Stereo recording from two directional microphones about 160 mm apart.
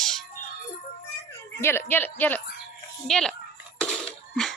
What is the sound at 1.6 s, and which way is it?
Speech, 15° left (ahead or behind).